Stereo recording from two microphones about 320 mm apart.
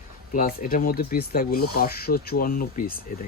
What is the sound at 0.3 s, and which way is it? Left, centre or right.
Speech, left.